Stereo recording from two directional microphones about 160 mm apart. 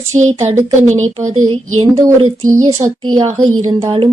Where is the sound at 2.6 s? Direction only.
20° right (ahead or behind).